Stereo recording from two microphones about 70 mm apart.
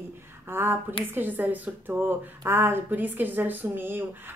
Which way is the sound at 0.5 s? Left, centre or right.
Right.